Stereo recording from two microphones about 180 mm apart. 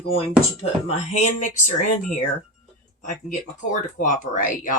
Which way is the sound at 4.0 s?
45° left (ahead or behind).